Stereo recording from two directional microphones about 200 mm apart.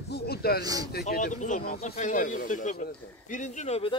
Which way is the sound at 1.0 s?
40° left (ahead or behind).